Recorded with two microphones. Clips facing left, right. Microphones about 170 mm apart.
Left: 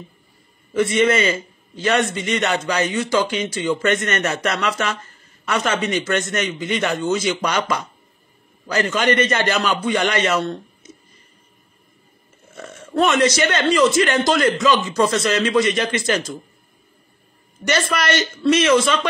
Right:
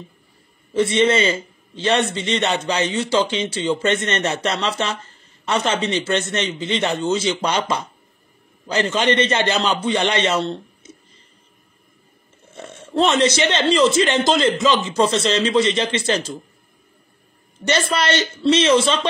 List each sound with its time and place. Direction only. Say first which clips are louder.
0.8 s speech: even; 30° right (ahead or behind)
12.5 s speech: even; 30° right (ahead or behind)
17.6 s speech: right 1 dB; 30° right (ahead or behind)